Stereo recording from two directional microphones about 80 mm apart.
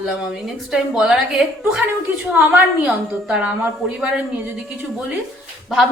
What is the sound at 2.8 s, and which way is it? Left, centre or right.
A woman's voice, centre.